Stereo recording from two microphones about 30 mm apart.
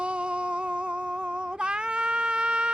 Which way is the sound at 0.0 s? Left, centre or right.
Right.